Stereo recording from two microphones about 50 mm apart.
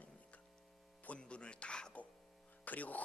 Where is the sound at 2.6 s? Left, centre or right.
Left.